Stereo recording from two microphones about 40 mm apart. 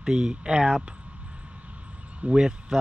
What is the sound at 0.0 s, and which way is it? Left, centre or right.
Speech, right.